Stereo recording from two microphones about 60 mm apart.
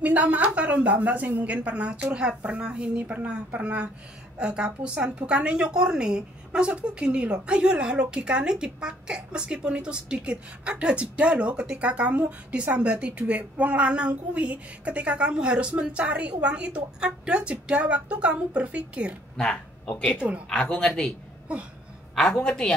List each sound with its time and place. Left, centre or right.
0.0 s a woman's voice: right
19.3 s speech: centre
20.2 s speech: right
20.4 s a woman's voice: centre
22.1 s a woman's voice: centre